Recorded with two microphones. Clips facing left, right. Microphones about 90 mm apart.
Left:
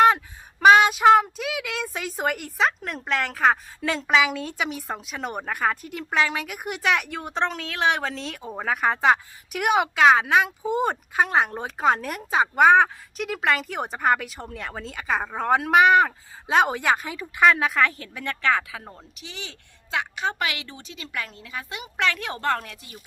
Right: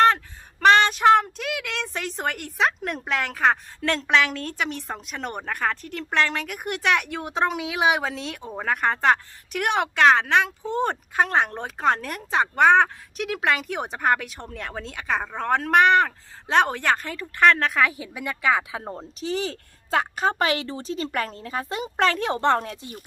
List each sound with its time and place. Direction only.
0.6 s speech: 5° left (ahead or behind); by 18.6 s 10° right (ahead or behind)
18.7 s a woman's voice: 30° right (ahead or behind)